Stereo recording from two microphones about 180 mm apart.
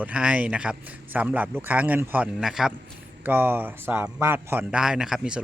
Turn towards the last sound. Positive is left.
turn(degrees=-5)  # may be behind; listen again after turning